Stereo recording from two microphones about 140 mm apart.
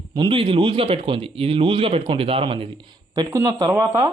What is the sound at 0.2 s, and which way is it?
Speech, 35° right (ahead or behind).